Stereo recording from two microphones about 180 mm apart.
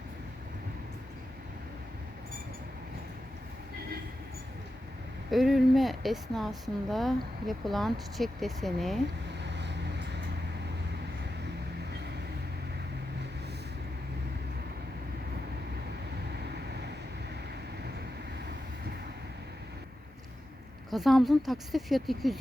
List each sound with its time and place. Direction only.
5.3 s speech: centre (ahead or behind)
9.4 s vehicle: 75° right (ahead or behind)
20.9 s speech: centre (ahead or behind)